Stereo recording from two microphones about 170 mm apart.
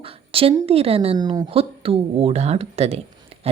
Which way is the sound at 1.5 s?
35° right (ahead or behind).